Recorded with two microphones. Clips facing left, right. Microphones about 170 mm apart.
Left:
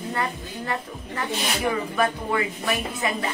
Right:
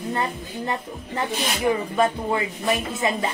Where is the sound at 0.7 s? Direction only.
20° right (ahead or behind).